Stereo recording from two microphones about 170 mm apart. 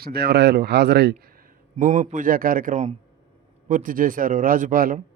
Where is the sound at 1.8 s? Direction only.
50° right (ahead or behind).